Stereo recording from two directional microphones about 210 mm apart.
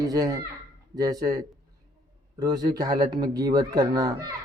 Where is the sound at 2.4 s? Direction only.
15° right (ahead or behind).